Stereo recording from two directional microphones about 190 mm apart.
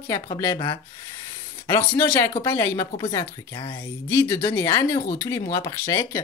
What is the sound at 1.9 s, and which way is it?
Speech, 15° left (ahead or behind).